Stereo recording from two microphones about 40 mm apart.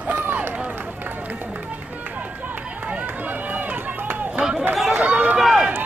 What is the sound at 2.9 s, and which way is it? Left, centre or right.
Run, right.